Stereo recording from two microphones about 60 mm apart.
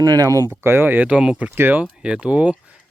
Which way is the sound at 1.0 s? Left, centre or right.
Centre.